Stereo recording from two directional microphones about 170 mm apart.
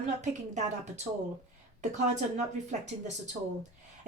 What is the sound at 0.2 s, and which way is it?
Speech, 45° right (ahead or behind).